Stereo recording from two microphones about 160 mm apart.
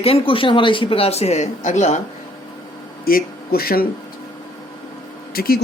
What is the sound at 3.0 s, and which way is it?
Speech, 70° left (ahead or behind).